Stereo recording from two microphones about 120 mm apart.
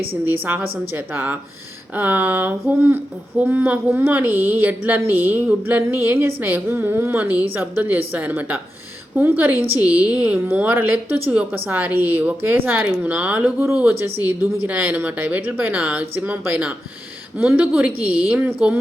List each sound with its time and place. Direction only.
0.3 s speech: 15° right (ahead or behind)